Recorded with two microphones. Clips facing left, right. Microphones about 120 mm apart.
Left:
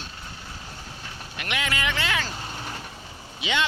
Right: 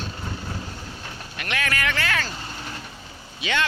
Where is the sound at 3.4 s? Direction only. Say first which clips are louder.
Right 1 dB; 20° left (ahead or behind).